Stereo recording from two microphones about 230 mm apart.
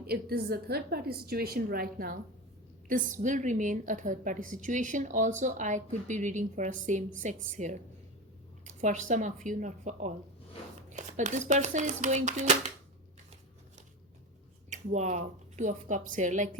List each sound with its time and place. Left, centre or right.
0.1 s a woman's voice: right
14.7 s speech: right